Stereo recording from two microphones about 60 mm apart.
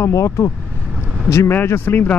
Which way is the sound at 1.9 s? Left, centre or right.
Left.